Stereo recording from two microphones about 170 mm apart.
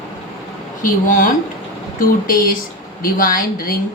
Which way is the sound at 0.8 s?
50° left (ahead or behind).